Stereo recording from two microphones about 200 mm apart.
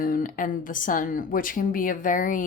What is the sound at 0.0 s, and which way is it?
Speech, 45° left (ahead or behind).